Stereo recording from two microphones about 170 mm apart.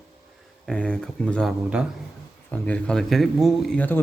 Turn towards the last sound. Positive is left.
turn(degrees=10)  # may be behind; listen again after turning